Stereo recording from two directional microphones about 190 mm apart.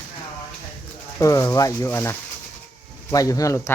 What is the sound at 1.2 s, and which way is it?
Speech, 15° left (ahead or behind).